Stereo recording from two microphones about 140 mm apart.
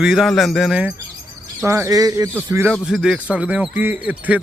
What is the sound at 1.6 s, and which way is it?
Speech, 20° right (ahead or behind).